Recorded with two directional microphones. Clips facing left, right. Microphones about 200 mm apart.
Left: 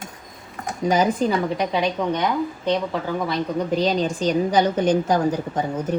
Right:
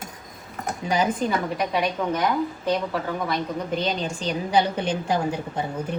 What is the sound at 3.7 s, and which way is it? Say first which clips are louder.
A woman's voice: left 6 dB; 40° left (ahead or behind).